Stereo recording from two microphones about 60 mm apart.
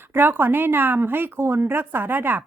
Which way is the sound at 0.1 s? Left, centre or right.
Right.